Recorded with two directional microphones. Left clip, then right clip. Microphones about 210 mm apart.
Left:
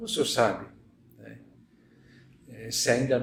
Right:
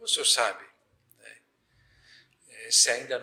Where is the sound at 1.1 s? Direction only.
35° right (ahead or behind).